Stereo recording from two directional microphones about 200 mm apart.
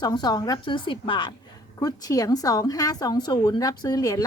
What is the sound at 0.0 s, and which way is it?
Speech, 20° left (ahead or behind).